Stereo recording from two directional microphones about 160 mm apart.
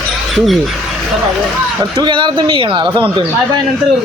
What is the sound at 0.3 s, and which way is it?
Speech, centre (ahead or behind).